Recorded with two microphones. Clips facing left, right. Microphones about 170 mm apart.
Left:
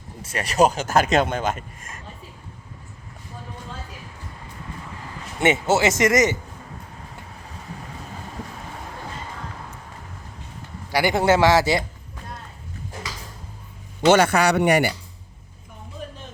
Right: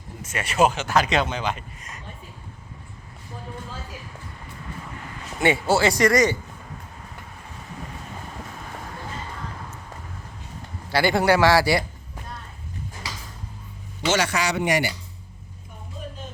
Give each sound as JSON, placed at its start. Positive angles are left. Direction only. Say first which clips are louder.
{"t": 0.2, "sound": "speech", "louder": "left 2 dB", "side_deg": 35}
{"t": 5.4, "sound": "speech", "louder": "left 1 dB", "side_deg": 20}
{"t": 10.9, "sound": "speech", "louder": "left 1 dB", "side_deg": 15}
{"t": 14.0, "sound": "speech", "louder": "left 7 dB", "side_deg": 55}